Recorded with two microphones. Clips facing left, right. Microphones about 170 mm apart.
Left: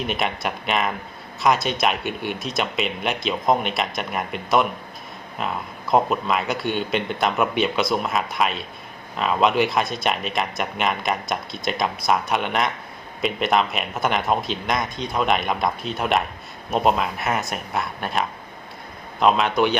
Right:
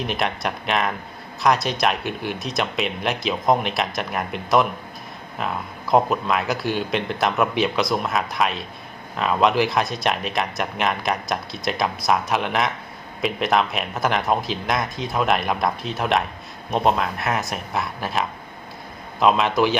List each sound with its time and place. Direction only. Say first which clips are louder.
0.0 s speech: even; centre (ahead or behind)